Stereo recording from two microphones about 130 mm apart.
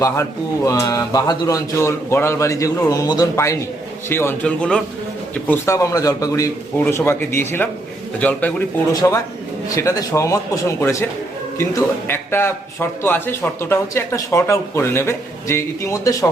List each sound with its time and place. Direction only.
0.0 s a man's voice: 25° left (ahead or behind)
4.4 s a man's voice: 10° left (ahead or behind)
8.9 s a man's voice: 25° left (ahead or behind)